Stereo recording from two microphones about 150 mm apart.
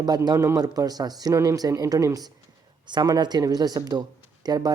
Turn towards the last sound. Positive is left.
turn(degrees=-25)  # may be behind; listen again after turning